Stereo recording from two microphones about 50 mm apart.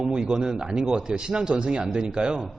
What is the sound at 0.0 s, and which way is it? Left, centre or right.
A man's voice, centre.